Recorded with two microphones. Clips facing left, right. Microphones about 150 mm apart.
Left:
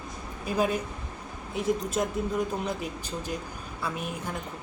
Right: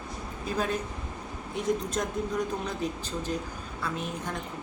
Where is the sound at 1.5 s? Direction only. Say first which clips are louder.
Left 1 dB; 5° left (ahead or behind).